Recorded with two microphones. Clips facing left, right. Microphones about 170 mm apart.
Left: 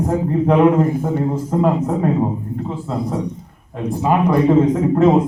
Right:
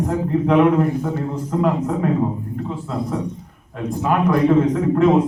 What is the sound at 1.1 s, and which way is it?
A man's voice, 25° left (ahead or behind).